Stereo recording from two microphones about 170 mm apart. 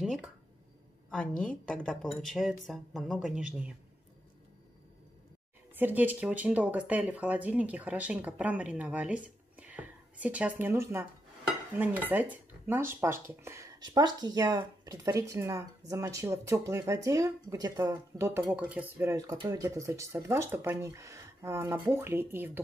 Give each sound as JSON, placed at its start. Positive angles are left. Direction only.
{"t": 1.1, "sound": "a woman's voice", "side_deg": 5}
{"t": 5.8, "sound": "speech", "side_deg": -10}